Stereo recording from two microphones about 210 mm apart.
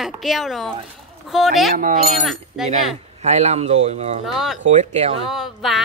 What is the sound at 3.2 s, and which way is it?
Speech, 30° right (ahead or behind).